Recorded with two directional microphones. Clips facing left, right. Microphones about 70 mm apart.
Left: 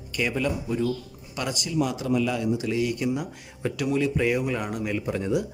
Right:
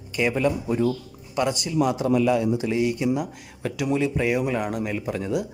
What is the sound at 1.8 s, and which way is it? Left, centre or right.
Speech, right.